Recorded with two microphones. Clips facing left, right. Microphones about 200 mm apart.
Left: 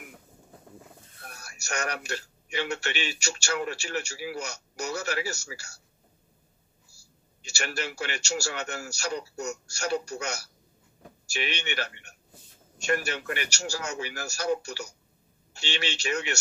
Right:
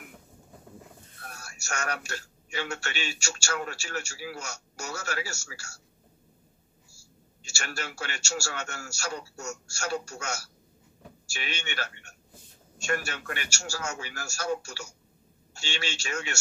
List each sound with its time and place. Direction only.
1.4 s a man's voice: 15° left (ahead or behind)
7.4 s a man's voice: 15° left (ahead or behind)